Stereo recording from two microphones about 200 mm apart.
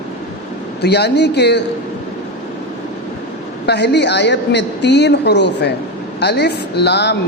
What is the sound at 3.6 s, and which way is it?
Speech, 55° left (ahead or behind).